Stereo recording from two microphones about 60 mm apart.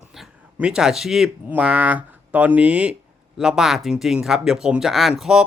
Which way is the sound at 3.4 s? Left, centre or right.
Centre.